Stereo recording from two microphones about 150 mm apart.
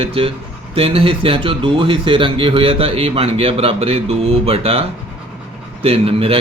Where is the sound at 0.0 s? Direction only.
40° right (ahead or behind).